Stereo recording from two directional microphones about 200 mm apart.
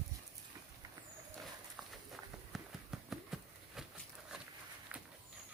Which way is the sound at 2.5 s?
Centre (ahead or behind).